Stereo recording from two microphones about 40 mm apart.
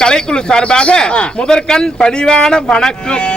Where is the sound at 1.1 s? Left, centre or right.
Left.